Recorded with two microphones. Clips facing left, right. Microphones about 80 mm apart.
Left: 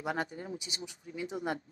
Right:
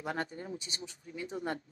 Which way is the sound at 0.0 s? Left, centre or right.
Centre.